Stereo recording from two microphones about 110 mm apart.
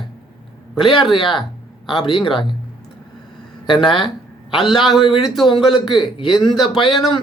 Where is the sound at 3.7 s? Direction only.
45° left (ahead or behind).